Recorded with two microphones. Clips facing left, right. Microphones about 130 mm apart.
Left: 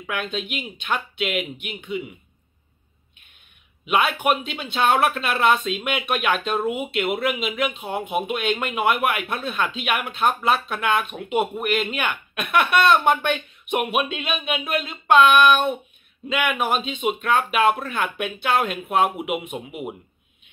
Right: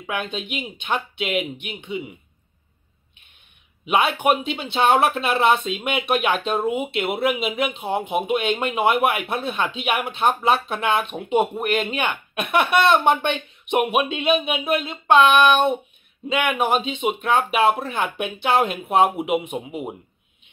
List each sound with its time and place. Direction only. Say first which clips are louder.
0.0 s speech: even; 20° right (ahead or behind)
3.9 s speech: right 2 dB; 25° right (ahead or behind)